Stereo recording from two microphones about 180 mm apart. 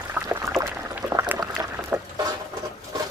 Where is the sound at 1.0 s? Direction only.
20° right (ahead or behind).